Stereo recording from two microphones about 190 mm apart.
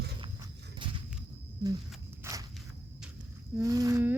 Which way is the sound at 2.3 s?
15° right (ahead or behind).